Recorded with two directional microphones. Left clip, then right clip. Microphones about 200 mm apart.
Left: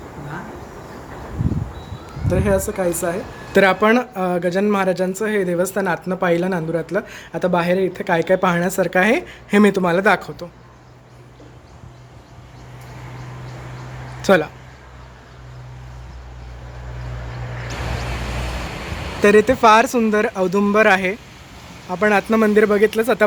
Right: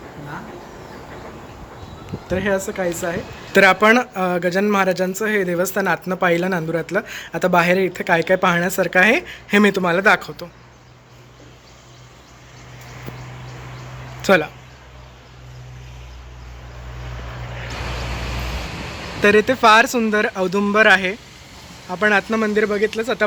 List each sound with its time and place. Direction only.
2.2 s speech: 5° left (ahead or behind)
14.2 s speech: 5° left (ahead or behind)
19.2 s speech: 5° left (ahead or behind)